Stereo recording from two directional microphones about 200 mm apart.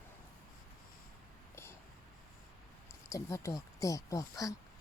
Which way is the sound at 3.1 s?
15° left (ahead or behind).